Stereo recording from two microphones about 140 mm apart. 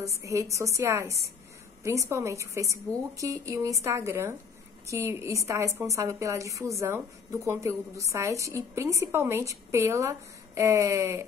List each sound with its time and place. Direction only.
0.0 s a woman's voice: 20° right (ahead or behind)